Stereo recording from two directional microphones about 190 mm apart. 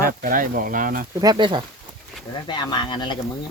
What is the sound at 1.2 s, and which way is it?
Speech, 20° right (ahead or behind).